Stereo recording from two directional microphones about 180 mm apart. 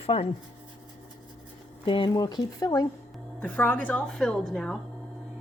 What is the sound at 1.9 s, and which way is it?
Speech, 25° left (ahead or behind).